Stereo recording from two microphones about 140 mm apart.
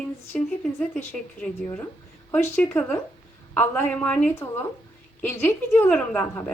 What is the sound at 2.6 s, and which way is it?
A woman's voice, 15° left (ahead or behind).